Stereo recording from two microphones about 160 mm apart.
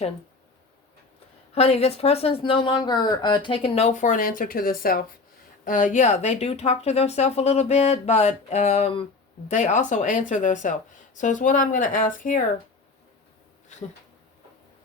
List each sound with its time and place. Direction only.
1.5 s speech: 40° left (ahead or behind)
4.0 s speech: 55° left (ahead or behind)
5.6 s a woman's voice: 55° left (ahead or behind)
13.7 s a woman's voice: 45° left (ahead or behind)